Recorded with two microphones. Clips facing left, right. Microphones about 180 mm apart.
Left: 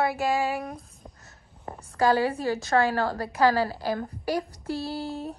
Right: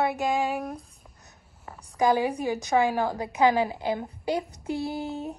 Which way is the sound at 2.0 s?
15° right (ahead or behind).